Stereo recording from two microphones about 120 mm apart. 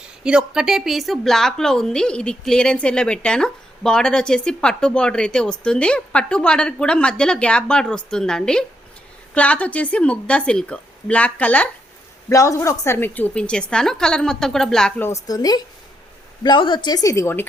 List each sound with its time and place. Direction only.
0.3 s a woman's voice: 5° right (ahead or behind); by 11.7 s 10° left (ahead or behind)
12.3 s a woman's voice: 25° left (ahead or behind); by 15.0 s 5° left (ahead or behind)
15.0 s a woman's voice: 25° left (ahead or behind)